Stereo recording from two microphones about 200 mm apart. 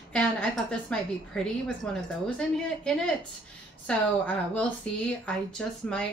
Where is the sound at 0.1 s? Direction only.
5° left (ahead or behind).